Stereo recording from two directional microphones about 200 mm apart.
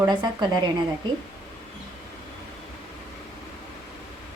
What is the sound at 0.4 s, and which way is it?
Speech, 20° right (ahead or behind).